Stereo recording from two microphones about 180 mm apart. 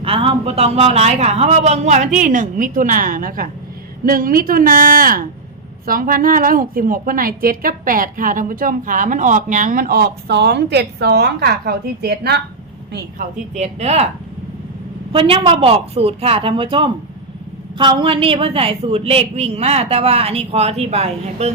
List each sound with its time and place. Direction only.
0.0 s a woman's voice: 30° right (ahead or behind); by 12.4 s 65° right (ahead or behind)
13.5 s a woman's voice: 35° right (ahead or behind)
15.1 s a woman's voice: 30° right (ahead or behind)